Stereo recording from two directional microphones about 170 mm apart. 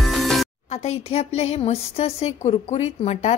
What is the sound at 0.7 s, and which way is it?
A woman's voice, 40° left (ahead or behind).